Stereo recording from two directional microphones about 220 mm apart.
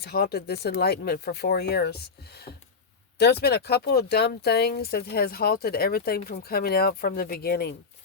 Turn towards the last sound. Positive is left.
turn(degrees=45)  # may be behind; listen again after turning